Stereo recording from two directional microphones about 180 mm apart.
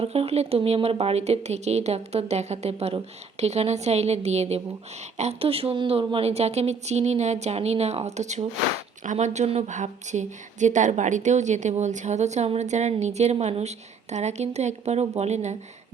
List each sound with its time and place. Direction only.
0.0 s speech: 35° right (ahead or behind)